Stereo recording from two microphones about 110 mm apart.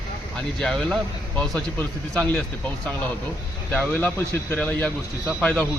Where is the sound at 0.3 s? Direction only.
5° left (ahead or behind).